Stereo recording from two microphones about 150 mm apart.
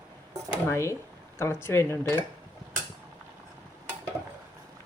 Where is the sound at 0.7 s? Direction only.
20° left (ahead or behind).